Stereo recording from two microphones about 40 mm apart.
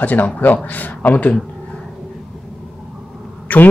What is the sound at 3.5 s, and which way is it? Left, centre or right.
Speech, left.